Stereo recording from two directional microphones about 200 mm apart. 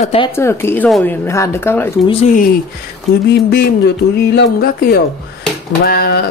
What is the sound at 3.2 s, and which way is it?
Speech, 55° left (ahead or behind).